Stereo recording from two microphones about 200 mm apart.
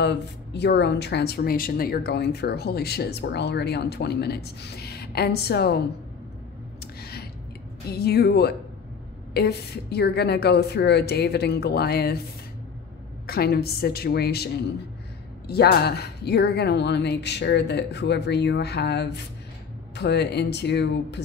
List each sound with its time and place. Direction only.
0.0 s speech: 60° left (ahead or behind)
6.8 s a sound: 50° left (ahead or behind)
7.9 s speech: 50° left (ahead or behind)
13.3 s speech: 50° left (ahead or behind)